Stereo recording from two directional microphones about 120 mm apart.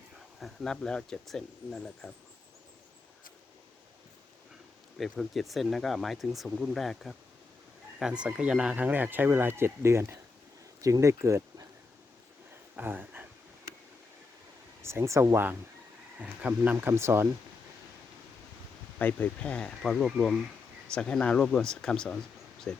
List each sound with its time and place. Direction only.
0.3 s speech: 5° left (ahead or behind)
4.9 s speech: centre (ahead or behind); by 11.6 s 25° right (ahead or behind)
12.7 s a sound: 15° right (ahead or behind)
14.8 s speech: 20° right (ahead or behind)
16.7 s speech: 25° right (ahead or behind)
18.9 s speech: 15° left (ahead or behind)